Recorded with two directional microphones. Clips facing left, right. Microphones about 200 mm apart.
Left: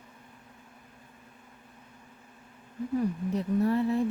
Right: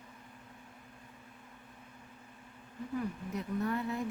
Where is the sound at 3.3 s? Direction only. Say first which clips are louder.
Left 8 dB; 30° left (ahead or behind).